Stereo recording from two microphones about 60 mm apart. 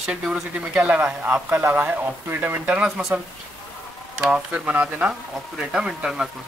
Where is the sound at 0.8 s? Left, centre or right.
Right.